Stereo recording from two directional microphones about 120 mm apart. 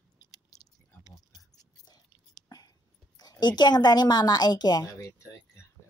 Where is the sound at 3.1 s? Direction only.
35° left (ahead or behind).